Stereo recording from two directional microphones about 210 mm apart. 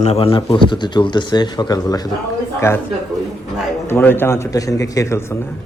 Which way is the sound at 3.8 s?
10° left (ahead or behind).